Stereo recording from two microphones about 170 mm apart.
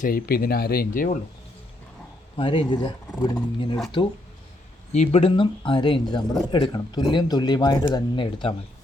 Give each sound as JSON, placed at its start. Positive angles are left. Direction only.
{"t": 0.0, "sound": "speech", "side_deg": 60}
{"t": 2.3, "sound": "speech", "side_deg": 30}